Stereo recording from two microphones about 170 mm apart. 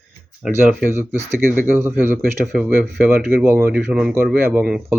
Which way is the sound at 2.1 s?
Centre (ahead or behind).